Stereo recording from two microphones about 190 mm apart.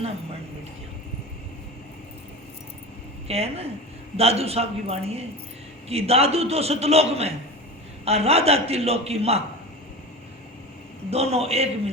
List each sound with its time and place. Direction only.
3.2 s a man's voice: 30° right (ahead or behind)
11.1 s a man's voice: 30° right (ahead or behind)